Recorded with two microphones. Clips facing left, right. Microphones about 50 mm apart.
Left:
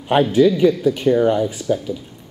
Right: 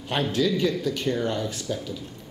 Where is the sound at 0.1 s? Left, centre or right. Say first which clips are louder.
Left 10 dB; centre.